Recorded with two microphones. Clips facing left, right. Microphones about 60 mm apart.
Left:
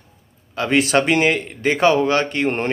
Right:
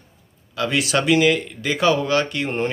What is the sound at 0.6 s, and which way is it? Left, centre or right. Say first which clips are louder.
A man's voice: left 4 dB; left.